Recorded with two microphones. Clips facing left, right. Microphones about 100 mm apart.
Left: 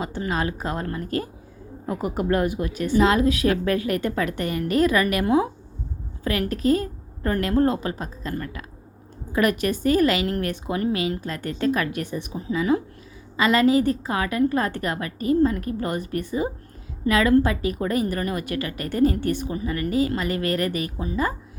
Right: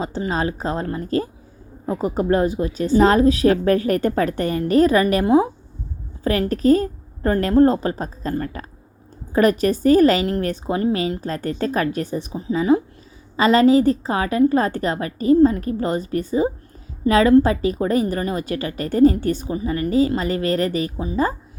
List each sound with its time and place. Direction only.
0.0 s a woman's voice: 30° right (ahead or behind)